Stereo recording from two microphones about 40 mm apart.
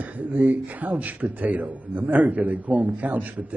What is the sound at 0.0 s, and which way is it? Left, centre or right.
A man's voice, right.